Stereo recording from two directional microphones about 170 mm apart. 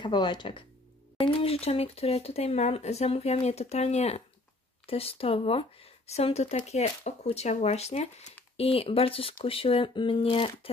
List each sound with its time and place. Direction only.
0.0 s speech: 25° left (ahead or behind)